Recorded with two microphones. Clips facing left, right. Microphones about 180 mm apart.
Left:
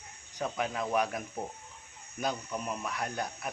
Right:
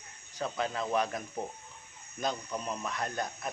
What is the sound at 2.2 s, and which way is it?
Speech, 10° left (ahead or behind).